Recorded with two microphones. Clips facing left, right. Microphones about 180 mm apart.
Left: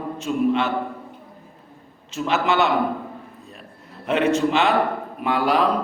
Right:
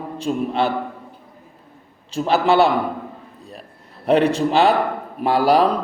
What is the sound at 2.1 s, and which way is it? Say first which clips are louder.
Speech: right 4 dB; 35° right (ahead or behind).